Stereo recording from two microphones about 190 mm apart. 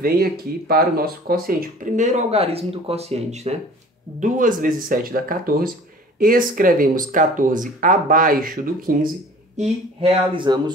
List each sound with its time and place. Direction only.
0.0 s speech: 50° right (ahead or behind); by 3.5 s 35° right (ahead or behind)
4.2 s speech: 45° right (ahead or behind)
10.0 s speech: 25° right (ahead or behind)